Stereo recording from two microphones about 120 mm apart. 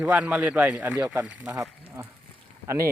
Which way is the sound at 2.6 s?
25° right (ahead or behind).